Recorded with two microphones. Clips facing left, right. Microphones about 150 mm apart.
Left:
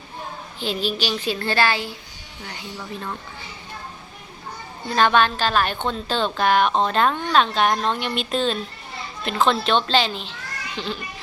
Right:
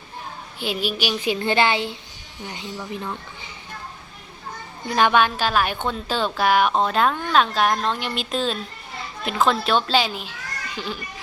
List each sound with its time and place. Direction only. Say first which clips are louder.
0.6 s speech: even; 10° right (ahead or behind)
4.9 s a woman's voice: even; 15° right (ahead or behind)